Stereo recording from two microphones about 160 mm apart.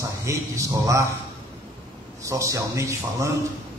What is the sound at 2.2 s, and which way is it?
A man's voice, 20° right (ahead or behind).